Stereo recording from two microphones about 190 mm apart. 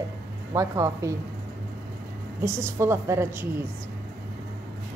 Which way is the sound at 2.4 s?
15° right (ahead or behind).